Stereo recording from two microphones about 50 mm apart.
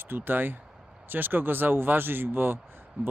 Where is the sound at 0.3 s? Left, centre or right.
Right.